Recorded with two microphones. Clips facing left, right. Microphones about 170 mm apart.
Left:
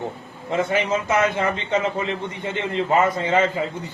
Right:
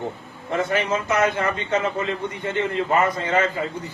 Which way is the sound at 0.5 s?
20° left (ahead or behind).